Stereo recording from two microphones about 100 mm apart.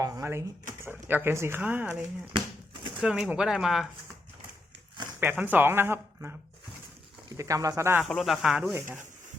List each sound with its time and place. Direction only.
0.0 s speech: 30° right (ahead or behind)
3.0 s speech: 5° right (ahead or behind)
5.2 s speech: 15° right (ahead or behind)
7.3 s speech: 35° right (ahead or behind)
8.0 s speech: centre (ahead or behind)